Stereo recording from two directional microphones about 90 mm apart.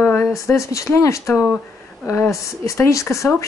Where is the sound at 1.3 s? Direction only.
5° right (ahead or behind).